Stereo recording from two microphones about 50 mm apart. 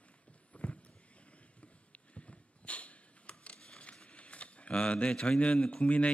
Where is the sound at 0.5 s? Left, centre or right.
Left.